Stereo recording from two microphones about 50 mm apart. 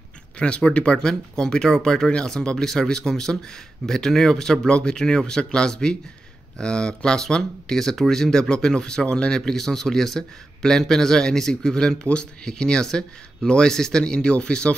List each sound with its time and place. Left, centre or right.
0.4 s a man's voice: left